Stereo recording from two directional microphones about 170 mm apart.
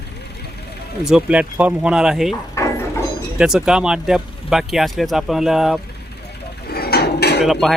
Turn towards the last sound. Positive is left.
turn(degrees=0)  # may be behind; listen again after turning